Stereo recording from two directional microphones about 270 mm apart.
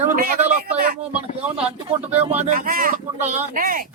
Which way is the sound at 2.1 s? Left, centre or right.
Right.